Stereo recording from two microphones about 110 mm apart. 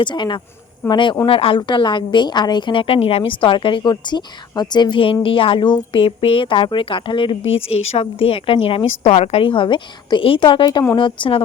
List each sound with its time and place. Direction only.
0.0 s a woman's voice: 45° left (ahead or behind); by 9.4 s 80° left
9.4 s a woman's voice: 50° left (ahead or behind)